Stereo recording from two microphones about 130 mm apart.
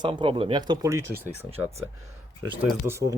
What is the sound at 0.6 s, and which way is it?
Speech, 30° right (ahead or behind).